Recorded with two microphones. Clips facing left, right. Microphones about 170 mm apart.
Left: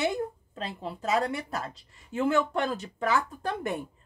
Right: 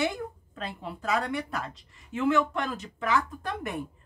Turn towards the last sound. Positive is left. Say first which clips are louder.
# left 3 dB
turn(degrees=30)  # may be behind; listen again after turning